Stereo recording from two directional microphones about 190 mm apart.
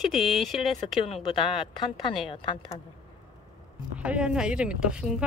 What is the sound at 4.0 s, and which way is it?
Speech, 5° right (ahead or behind).